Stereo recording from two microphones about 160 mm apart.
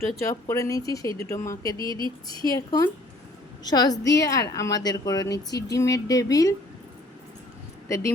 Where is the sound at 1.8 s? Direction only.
30° right (ahead or behind).